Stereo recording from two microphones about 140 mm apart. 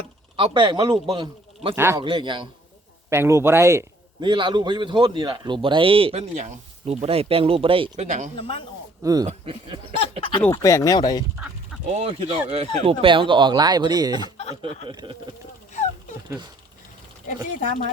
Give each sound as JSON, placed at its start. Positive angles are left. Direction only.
{"t": 0.3, "sound": "a man's voice", "side_deg": -35}
{"t": 1.7, "sound": "speech", "side_deg": -15}
{"t": 2.0, "sound": "speech", "side_deg": -35}
{"t": 3.1, "sound": "a man's voice", "side_deg": -20}
{"t": 4.2, "sound": "speech", "side_deg": -35}
{"t": 6.3, "sound": "speech", "side_deg": -55}
{"t": 7.9, "sound": "speech", "side_deg": -55}
{"t": 8.4, "sound": "a man's voice", "side_deg": 40}
{"t": 9.2, "sound": "speech", "side_deg": -45}
{"t": 10.5, "sound": "speech", "side_deg": 20}
{"t": 11.9, "sound": "speech", "side_deg": -50}
{"t": 15.7, "sound": "dog", "side_deg": 55}
{"t": 17.2, "sound": "speech", "side_deg": 65}